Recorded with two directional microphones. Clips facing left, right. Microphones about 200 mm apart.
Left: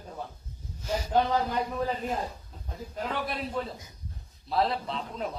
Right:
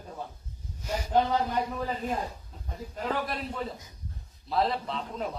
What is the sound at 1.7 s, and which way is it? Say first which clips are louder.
A man's voice: left 1 dB; centre (ahead or behind).